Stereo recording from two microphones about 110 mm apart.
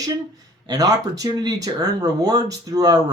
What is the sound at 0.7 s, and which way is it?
Speech, 35° right (ahead or behind).